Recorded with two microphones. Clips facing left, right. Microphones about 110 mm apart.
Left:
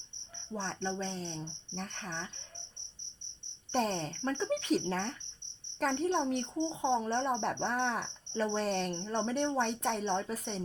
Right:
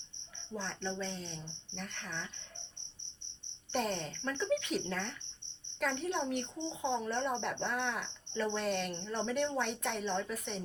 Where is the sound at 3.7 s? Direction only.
35° left (ahead or behind).